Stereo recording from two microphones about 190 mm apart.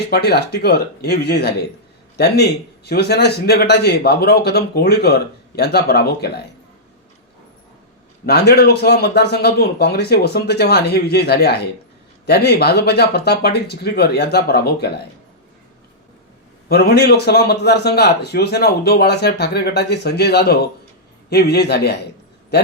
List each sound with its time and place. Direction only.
0.0 s speech: 60° left (ahead or behind)
8.3 s speech: 60° left (ahead or behind)
16.6 s a man's voice: 55° left (ahead or behind)